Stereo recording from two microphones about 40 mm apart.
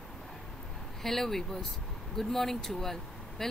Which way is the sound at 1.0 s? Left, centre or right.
Centre.